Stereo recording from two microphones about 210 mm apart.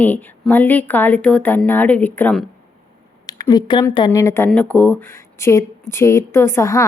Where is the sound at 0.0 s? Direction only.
10° left (ahead or behind).